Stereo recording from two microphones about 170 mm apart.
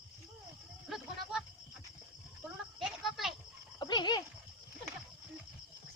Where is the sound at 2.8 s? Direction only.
Centre (ahead or behind).